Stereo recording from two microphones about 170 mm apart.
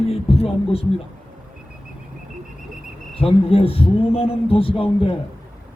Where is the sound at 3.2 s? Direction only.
35° left (ahead or behind).